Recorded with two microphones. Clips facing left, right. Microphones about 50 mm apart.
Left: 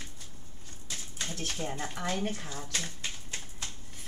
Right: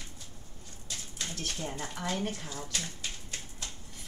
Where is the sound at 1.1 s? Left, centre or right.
Left.